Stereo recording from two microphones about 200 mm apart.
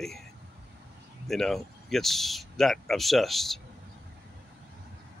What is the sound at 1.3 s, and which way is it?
Speech, centre (ahead or behind).